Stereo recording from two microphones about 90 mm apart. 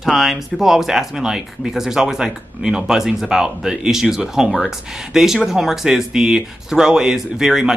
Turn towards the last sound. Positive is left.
turn(degrees=-5)  # may be behind; listen again after turning